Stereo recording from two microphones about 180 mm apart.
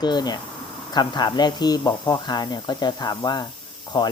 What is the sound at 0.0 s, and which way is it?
Speech, 25° left (ahead or behind).